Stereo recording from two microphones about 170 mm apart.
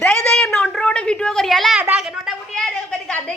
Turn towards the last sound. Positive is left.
turn(degrees=5)  # may be behind; listen again after turning